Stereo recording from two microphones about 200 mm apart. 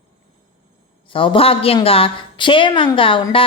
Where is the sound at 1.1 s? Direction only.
25° left (ahead or behind).